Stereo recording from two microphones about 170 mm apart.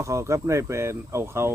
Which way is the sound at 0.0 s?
15° right (ahead or behind).